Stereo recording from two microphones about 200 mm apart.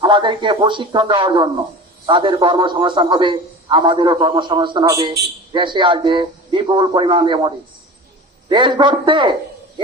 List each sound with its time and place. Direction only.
0.0 s a man's voice: 25° right (ahead or behind)